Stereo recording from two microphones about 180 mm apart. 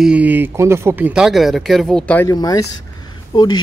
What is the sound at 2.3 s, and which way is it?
Speech, 20° left (ahead or behind).